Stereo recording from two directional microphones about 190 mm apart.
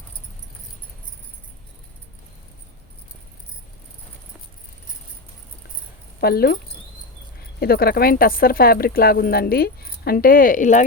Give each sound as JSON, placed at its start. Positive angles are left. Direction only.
{"t": 6.1, "sound": "speech", "side_deg": 55}
{"t": 7.6, "sound": "speech", "side_deg": 55}